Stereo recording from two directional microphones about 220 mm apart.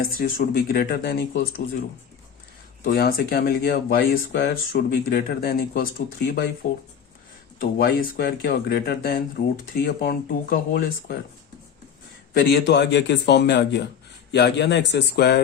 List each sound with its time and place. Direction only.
0.2 s speech: 40° left (ahead or behind)
2.8 s speech: 45° left (ahead or behind)
12.3 s speech: 45° left (ahead or behind)